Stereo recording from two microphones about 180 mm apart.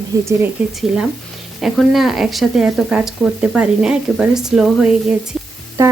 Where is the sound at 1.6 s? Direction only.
Centre (ahead or behind).